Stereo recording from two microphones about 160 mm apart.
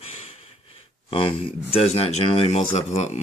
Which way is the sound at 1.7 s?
40° left (ahead or behind).